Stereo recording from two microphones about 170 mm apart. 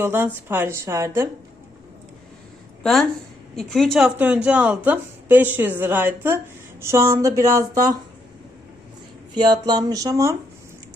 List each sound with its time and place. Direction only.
0.0 s a woman's voice: 15° right (ahead or behind)
2.8 s a woman's voice: centre (ahead or behind); by 7.9 s 20° right (ahead or behind)
9.3 s speech: 25° right (ahead or behind)